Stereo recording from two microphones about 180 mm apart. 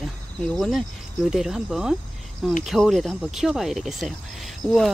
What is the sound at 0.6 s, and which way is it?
Speech, centre (ahead or behind).